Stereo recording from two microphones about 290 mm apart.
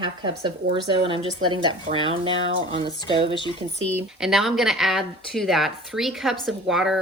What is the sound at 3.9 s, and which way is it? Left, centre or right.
A woman's voice, centre.